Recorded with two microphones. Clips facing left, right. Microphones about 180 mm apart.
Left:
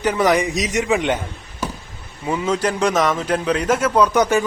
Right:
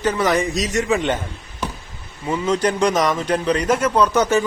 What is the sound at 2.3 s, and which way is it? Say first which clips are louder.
Speech: right 1 dB; 5° left (ahead or behind).